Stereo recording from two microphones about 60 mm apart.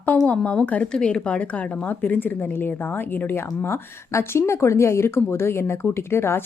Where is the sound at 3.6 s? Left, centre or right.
Left.